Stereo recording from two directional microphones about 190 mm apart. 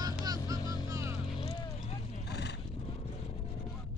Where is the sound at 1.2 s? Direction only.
25° left (ahead or behind).